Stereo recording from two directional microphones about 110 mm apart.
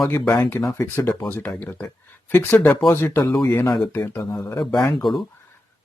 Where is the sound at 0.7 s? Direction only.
25° left (ahead or behind).